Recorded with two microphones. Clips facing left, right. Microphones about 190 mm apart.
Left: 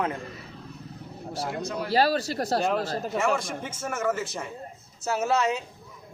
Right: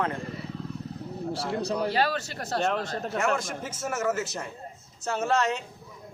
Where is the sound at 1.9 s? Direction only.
35° left (ahead or behind).